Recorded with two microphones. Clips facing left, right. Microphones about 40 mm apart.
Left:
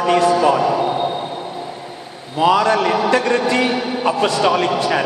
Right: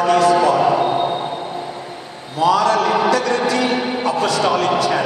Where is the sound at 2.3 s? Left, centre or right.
Left.